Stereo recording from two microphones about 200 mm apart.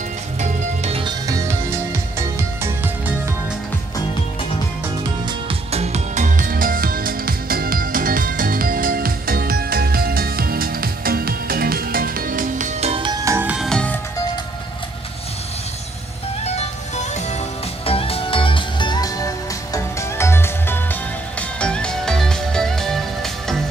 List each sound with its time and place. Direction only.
0.4 s music: 30° right (ahead or behind)
5.5 s music: 30° right (ahead or behind); by 13.9 s 5° left (ahead or behind)
16.4 s music: 35° left (ahead or behind); by 23.6 s centre (ahead or behind)